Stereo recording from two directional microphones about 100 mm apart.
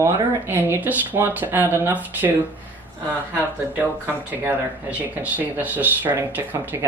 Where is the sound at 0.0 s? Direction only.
20° right (ahead or behind).